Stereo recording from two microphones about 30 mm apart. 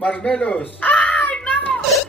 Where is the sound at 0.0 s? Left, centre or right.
Left.